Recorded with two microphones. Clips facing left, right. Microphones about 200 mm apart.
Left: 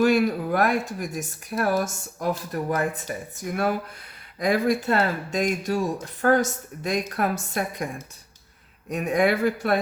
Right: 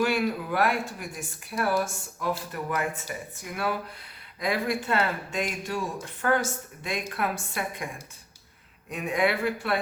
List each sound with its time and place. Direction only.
0.0 s speech: 45° left (ahead or behind)
8.9 s speech: 45° left (ahead or behind)